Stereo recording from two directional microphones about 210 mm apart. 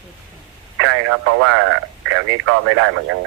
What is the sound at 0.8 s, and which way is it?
Speech, 70° right (ahead or behind).